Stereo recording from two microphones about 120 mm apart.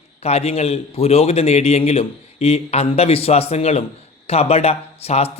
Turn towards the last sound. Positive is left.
turn(degrees=60)  # may be behind; listen again after turning